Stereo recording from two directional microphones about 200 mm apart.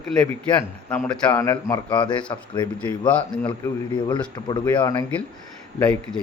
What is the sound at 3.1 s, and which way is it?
Speech, 5° left (ahead or behind).